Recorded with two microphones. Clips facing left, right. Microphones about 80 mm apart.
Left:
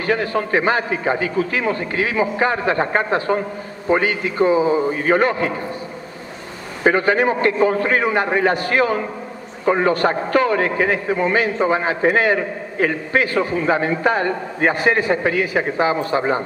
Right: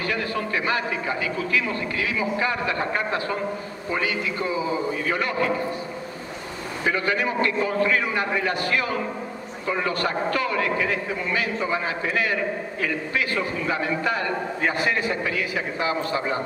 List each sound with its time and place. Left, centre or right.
0.0 s a man's voice: left
4.9 s a man's voice: left
6.8 s a man's voice: left